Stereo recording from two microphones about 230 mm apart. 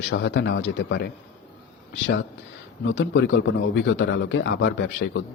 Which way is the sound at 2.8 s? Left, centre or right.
Left.